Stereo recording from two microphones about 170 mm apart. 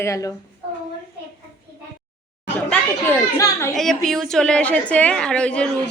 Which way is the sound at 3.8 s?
Centre (ahead or behind).